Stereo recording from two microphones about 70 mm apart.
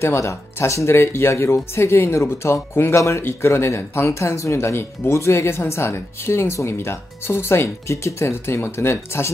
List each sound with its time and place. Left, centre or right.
0.0 s speech: left